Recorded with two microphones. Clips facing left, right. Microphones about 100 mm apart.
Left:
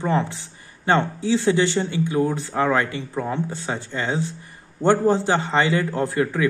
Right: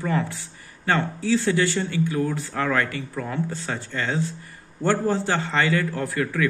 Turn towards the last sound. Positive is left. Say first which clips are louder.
# left 3 dB
turn(degrees=25)  # may be behind; listen again after turning